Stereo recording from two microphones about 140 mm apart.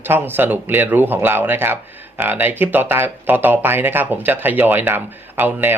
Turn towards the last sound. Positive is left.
turn(degrees=-15)  # may be behind; listen again after turning